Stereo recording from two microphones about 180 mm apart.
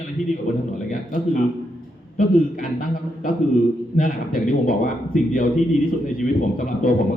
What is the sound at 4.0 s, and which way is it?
A man's voice, 50° left (ahead or behind).